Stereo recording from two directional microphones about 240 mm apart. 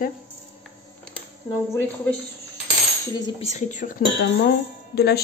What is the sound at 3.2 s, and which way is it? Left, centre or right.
Speech, left.